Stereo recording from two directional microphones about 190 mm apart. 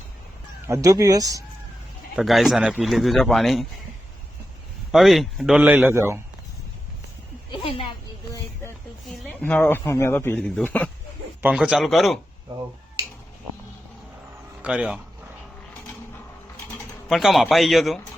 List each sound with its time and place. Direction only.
0.7 s speech: 15° right (ahead or behind)
2.1 s speech: centre (ahead or behind)
4.9 s speech: centre (ahead or behind)
7.5 s a sound: 30° left (ahead or behind)
9.4 s a man's voice: 10° left (ahead or behind)
11.4 s speech: 5° right (ahead or behind)
14.6 s speech: 5° right (ahead or behind)
17.1 s speech: centre (ahead or behind)